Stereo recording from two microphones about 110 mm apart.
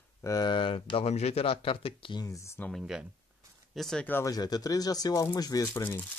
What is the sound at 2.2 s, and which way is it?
Speech, 30° left (ahead or behind).